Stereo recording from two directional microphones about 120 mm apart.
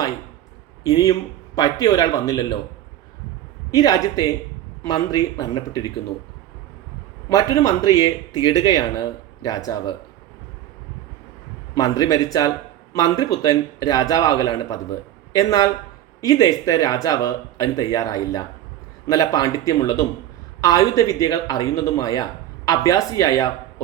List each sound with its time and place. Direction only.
0.9 s a man's voice: 35° left (ahead or behind)
3.8 s a man's voice: 35° left (ahead or behind)
7.3 s a man's voice: 30° left (ahead or behind)
11.8 s a man's voice: 30° left (ahead or behind)